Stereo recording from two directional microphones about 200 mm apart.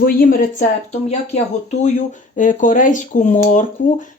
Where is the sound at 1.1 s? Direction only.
35° left (ahead or behind).